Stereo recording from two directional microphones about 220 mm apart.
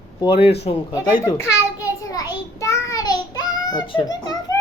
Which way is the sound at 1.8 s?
15° left (ahead or behind).